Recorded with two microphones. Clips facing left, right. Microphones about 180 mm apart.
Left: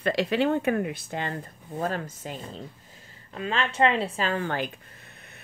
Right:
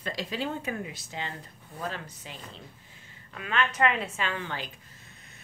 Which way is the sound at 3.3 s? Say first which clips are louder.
Left 2 dB; 30° left (ahead or behind).